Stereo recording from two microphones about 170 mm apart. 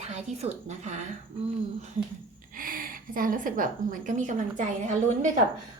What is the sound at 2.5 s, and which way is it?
A woman's voice, 55° right (ahead or behind).